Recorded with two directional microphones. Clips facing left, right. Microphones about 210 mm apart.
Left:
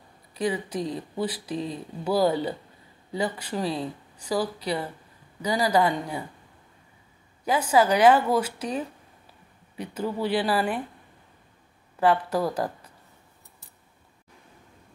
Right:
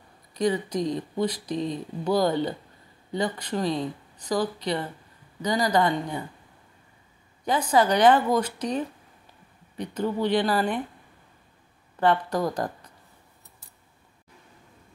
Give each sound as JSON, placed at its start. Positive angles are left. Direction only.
{"t": 0.3, "sound": "speech", "side_deg": 5}
{"t": 7.4, "sound": "speech", "side_deg": 5}
{"t": 12.0, "sound": "speech", "side_deg": 5}